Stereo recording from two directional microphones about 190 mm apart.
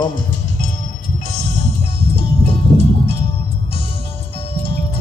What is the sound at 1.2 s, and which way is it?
Music, 40° left (ahead or behind).